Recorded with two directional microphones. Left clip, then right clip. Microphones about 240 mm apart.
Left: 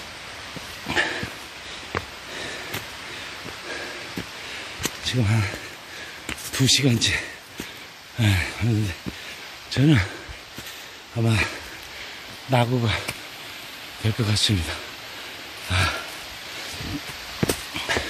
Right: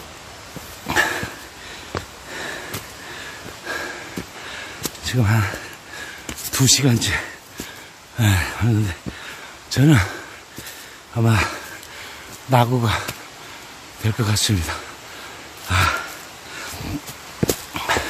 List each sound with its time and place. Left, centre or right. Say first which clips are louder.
0.8 s a sound: right 4 dB; centre
5.0 s speech: right 5 dB; centre
11.1 s speech: right 4 dB; centre
14.0 s speech: right 1 dB; centre
15.7 s a sound: right 5 dB; centre
17.4 s dog: right 3 dB; centre